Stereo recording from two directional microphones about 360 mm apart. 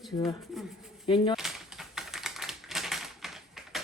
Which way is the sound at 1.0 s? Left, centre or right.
Centre.